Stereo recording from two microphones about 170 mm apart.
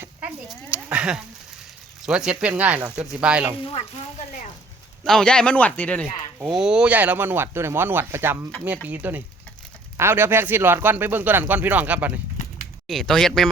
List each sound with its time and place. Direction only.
0.4 s speech: 5° right (ahead or behind)
3.6 s speech: 35° left (ahead or behind)
5.0 s speech: 5° left (ahead or behind)
6.4 s speech: 5° right (ahead or behind)
12.9 s speech: centre (ahead or behind)